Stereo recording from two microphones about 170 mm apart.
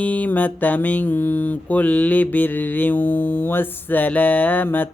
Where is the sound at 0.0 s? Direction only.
10° left (ahead or behind).